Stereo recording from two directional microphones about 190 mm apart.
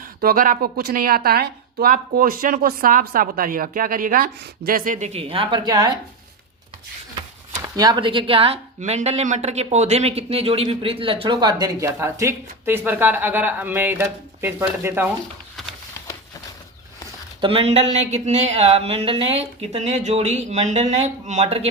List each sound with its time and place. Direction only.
0.0 s speech: 50° right (ahead or behind); by 5.9 s 20° right (ahead or behind)
7.8 s speech: 20° right (ahead or behind)
17.4 s speech: 30° right (ahead or behind)